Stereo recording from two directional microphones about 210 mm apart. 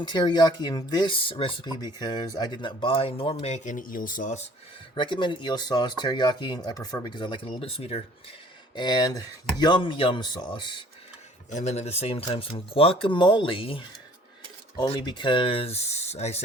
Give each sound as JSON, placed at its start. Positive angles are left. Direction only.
{"t": 0.0, "sound": "speech", "side_deg": 20}
{"t": 4.9, "sound": "speech", "side_deg": 20}